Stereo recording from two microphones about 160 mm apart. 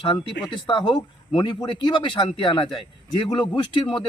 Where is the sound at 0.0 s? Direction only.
30° left (ahead or behind).